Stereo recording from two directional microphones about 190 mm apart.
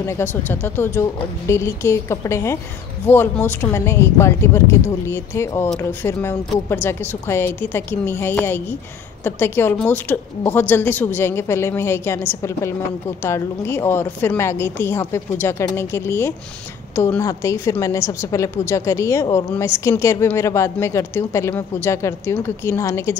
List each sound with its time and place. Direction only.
0.0 s a woman's voice: 15° left (ahead or behind)